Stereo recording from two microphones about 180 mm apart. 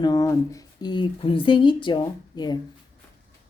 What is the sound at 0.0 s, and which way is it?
A woman's voice, 20° left (ahead or behind).